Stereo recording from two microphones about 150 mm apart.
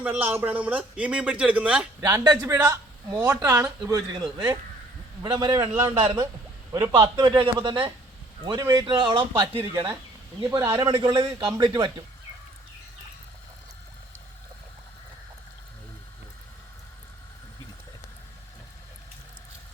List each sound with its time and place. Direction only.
0.0 s a man's voice: 10° right (ahead or behind)
2.0 s a man's voice: 25° right (ahead or behind)
10.6 s speech: 20° right (ahead or behind)